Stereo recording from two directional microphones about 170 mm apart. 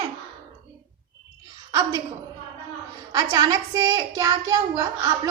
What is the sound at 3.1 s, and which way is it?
A woman's voice, 20° right (ahead or behind).